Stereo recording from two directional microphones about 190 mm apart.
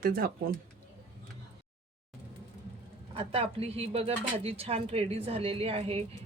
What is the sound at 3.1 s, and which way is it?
Speech, 30° right (ahead or behind).